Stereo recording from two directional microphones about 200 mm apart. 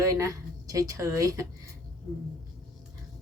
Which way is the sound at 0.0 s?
15° right (ahead or behind).